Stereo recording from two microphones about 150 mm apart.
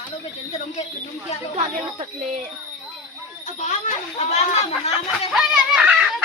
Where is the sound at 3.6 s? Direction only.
50° left (ahead or behind).